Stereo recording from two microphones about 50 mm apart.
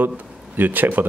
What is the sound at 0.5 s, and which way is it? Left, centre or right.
Speech, right.